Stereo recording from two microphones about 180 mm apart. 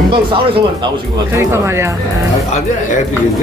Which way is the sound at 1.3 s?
15° right (ahead or behind).